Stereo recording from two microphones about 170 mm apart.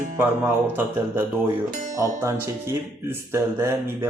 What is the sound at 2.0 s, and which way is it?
Speech, 20° right (ahead or behind).